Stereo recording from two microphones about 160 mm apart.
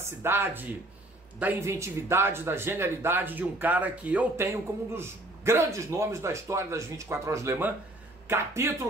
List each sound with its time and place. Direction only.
0.0 s a man's voice: 15° right (ahead or behind)